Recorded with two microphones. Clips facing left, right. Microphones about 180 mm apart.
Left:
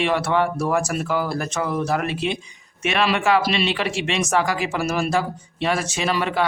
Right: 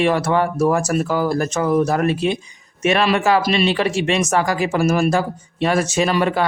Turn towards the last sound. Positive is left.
turn(degrees=-45)  # may be behind; listen again after turning